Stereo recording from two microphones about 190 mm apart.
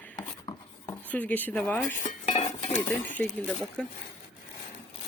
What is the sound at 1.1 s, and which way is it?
Speech, 10° left (ahead or behind).